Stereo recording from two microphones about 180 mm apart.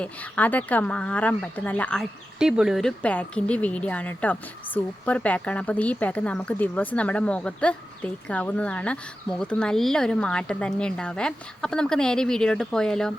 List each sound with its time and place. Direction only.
0.0 s speech: 10° left (ahead or behind)